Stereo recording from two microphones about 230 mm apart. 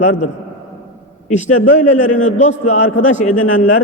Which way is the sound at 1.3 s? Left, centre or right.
Left.